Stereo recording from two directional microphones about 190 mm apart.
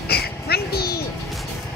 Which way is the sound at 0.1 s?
55° left (ahead or behind).